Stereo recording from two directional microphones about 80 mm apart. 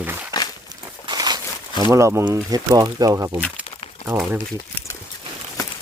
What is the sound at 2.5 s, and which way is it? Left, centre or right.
Speech, right.